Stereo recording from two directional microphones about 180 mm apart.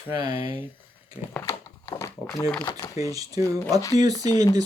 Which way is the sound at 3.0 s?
20° right (ahead or behind).